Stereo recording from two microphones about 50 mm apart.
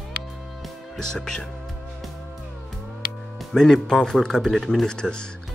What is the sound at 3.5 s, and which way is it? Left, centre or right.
Speech, centre.